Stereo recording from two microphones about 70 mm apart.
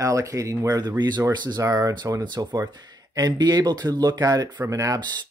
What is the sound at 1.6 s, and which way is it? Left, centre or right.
Speech, right.